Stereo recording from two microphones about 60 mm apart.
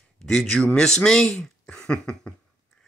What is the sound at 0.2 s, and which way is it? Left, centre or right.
Speech, centre.